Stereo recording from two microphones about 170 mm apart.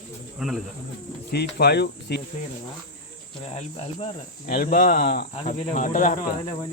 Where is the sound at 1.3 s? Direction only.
70° left (ahead or behind).